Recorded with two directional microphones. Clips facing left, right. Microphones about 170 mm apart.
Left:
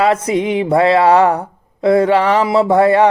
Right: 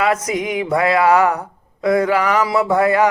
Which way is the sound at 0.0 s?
30° left (ahead or behind).